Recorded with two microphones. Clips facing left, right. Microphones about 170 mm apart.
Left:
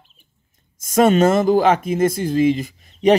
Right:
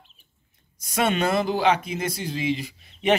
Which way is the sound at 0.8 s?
45° left (ahead or behind).